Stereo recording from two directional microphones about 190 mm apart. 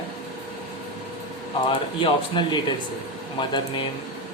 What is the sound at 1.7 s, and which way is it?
Speech, 25° left (ahead or behind).